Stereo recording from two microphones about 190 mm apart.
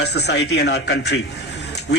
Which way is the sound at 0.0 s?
60° left (ahead or behind).